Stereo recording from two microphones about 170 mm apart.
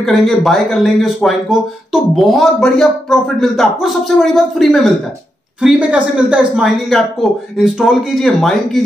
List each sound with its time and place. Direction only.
0.0 s speech: centre (ahead or behind)